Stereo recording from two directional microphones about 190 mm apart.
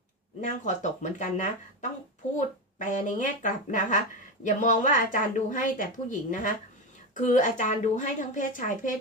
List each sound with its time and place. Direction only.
0.4 s a woman's voice: 40° left (ahead or behind)